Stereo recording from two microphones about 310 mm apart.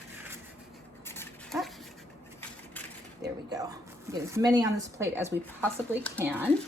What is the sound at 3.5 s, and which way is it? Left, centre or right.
A woman's voice, centre.